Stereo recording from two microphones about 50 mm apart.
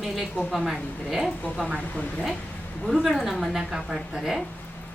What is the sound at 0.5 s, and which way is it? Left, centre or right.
A woman's voice, centre.